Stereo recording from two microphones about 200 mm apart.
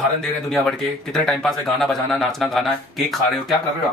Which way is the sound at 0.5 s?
5° left (ahead or behind).